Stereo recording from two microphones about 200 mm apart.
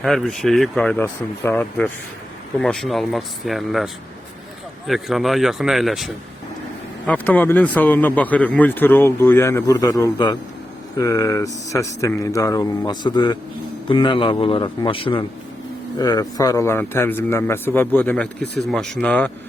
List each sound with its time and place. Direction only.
0.0 s speech: centre (ahead or behind)
7.1 s speech: 10° left (ahead or behind)